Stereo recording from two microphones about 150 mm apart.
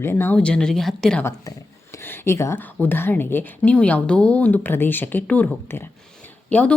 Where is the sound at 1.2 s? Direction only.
20° left (ahead or behind).